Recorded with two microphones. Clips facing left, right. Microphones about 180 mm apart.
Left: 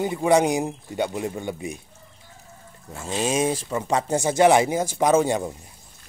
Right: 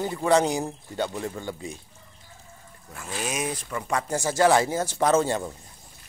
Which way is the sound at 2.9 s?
25° left (ahead or behind).